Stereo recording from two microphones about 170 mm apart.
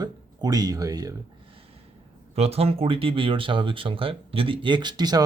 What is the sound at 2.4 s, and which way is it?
Speech, 35° right (ahead or behind).